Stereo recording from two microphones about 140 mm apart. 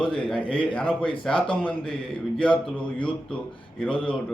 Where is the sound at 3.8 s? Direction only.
5° left (ahead or behind).